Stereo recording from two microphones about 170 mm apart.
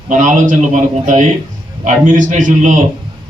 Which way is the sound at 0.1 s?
50° right (ahead or behind).